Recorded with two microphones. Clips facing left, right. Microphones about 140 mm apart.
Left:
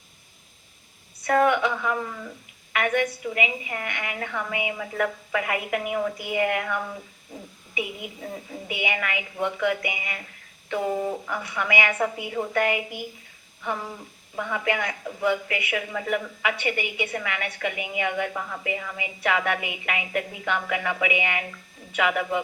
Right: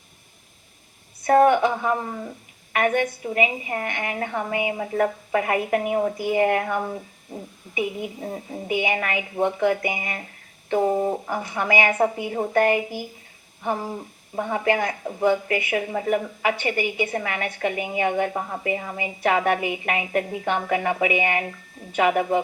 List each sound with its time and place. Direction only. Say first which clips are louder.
1.2 s speech: right 5 dB; 35° right (ahead or behind)
7.3 s speech: right 5 dB; 50° right (ahead or behind)
7.8 s speech: right 5 dB; 35° right (ahead or behind)